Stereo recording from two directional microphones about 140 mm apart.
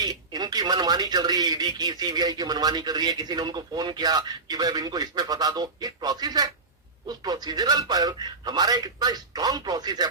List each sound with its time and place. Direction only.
0.0 s speech: 30° right (ahead or behind)